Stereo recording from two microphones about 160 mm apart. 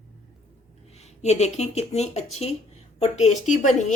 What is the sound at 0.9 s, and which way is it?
Speech, 45° left (ahead or behind).